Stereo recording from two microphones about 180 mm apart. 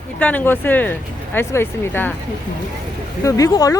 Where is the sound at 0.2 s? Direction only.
10° left (ahead or behind).